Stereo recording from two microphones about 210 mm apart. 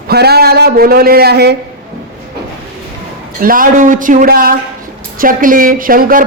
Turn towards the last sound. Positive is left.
turn(degrees=-40)  # may be behind; listen again after turning